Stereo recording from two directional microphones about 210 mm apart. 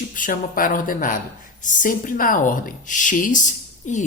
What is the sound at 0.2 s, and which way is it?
Speech, 40° left (ahead or behind).